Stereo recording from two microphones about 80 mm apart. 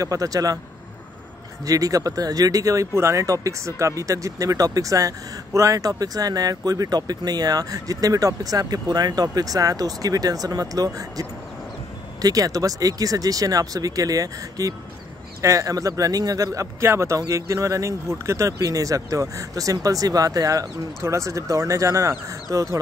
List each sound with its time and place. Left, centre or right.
0.0 s speech: right
1.6 s speech: right